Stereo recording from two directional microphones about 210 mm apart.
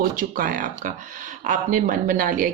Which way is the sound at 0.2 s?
40° right (ahead or behind).